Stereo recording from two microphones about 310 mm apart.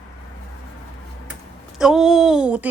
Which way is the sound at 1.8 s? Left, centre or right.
Centre.